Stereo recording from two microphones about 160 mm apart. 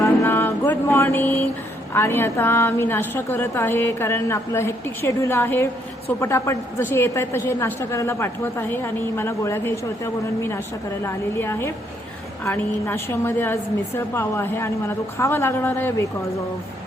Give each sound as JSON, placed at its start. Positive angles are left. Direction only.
{"t": 0.0, "sound": "mantra", "side_deg": 15}
{"t": 1.9, "sound": "a woman's voice", "side_deg": 15}
{"t": 11.0, "sound": "a woman's voice", "side_deg": 15}